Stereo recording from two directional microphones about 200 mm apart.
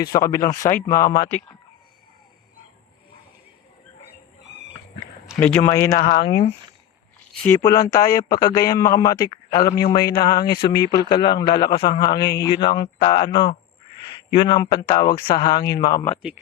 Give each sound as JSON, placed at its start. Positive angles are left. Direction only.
{"t": 0.0, "sound": "speech", "side_deg": 20}
{"t": 5.4, "sound": "a man's voice", "side_deg": 10}
{"t": 7.6, "sound": "a man's voice", "side_deg": 20}
{"t": 16.0, "sound": "speech", "side_deg": 5}